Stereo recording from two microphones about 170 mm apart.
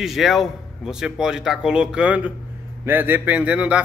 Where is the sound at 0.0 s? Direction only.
Centre (ahead or behind).